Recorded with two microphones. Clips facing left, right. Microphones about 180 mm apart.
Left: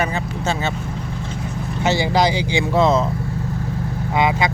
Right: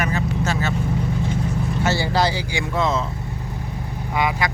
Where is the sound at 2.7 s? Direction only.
30° left (ahead or behind).